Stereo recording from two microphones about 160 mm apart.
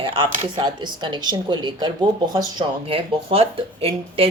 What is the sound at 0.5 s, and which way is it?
A woman's voice, 30° right (ahead or behind).